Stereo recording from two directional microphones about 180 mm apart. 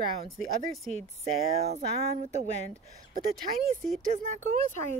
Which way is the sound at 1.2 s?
35° right (ahead or behind).